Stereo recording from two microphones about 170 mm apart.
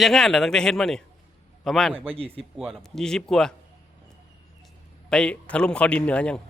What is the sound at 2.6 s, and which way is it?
Speech, centre (ahead or behind).